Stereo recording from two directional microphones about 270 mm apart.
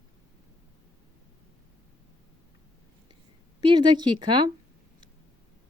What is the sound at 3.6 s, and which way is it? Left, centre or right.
Speech, centre.